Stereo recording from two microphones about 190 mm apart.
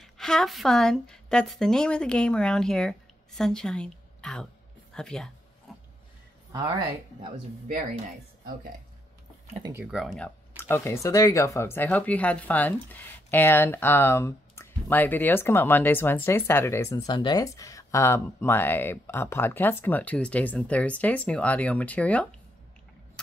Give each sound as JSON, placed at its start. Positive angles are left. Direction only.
{"t": 0.0, "sound": "a woman's voice", "side_deg": 0}
{"t": 5.7, "sound": "pig", "side_deg": 0}
{"t": 9.6, "sound": "speech", "side_deg": -15}
{"t": 9.8, "sound": "speech", "side_deg": 0}